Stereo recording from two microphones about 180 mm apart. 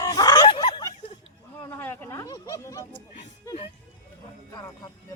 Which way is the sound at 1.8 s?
15° left (ahead or behind).